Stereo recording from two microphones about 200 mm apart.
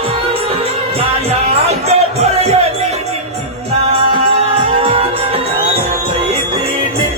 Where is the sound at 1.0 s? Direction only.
30° right (ahead or behind).